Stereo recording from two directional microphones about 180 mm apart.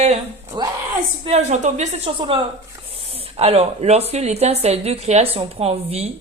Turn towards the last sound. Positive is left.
turn(degrees=-35)  # may be behind; listen again after turning